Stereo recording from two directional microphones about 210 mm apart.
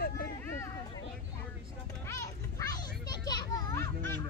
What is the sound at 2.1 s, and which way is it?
Children playing, 15° left (ahead or behind).